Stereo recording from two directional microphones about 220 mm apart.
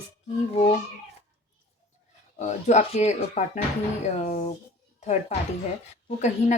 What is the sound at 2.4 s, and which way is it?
Speech, 30° left (ahead or behind).